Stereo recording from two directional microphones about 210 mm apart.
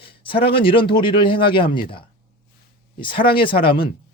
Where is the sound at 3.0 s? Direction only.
25° left (ahead or behind).